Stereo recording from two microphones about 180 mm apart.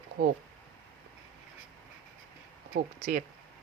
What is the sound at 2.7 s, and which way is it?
Speech, 50° right (ahead or behind).